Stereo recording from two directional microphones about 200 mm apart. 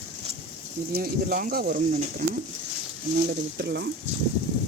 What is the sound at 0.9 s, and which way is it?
Speech, 45° right (ahead or behind).